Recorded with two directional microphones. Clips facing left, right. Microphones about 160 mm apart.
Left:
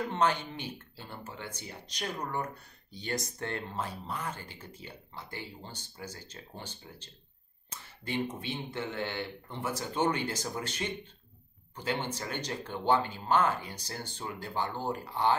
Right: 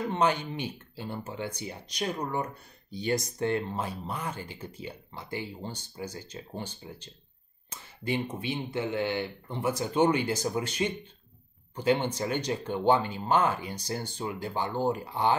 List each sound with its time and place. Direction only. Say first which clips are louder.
0.1 s speech: right 3 dB; 15° right (ahead or behind)